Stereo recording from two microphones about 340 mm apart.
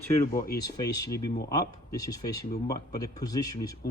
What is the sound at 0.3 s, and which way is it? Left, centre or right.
Speech, left.